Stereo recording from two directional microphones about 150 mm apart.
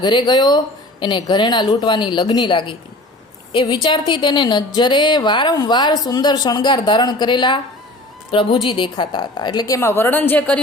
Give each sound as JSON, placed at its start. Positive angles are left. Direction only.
{"t": 0.0, "sound": "a woman's voice", "side_deg": 30}